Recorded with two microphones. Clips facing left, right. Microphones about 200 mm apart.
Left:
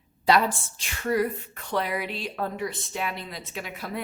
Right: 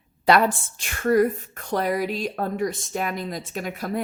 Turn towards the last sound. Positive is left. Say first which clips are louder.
# right 6 dB
turn(degrees=-45)  # may be behind; listen again after turning